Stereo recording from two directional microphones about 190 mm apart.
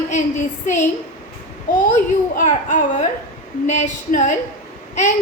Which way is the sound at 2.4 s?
40° left (ahead or behind).